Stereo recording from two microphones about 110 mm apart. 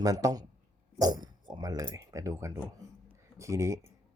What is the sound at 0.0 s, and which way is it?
A man's voice, 30° right (ahead or behind).